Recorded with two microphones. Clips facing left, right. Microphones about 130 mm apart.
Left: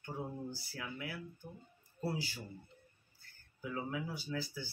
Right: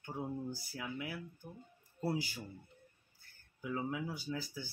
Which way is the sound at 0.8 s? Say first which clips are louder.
Right 1 dB; 15° right (ahead or behind).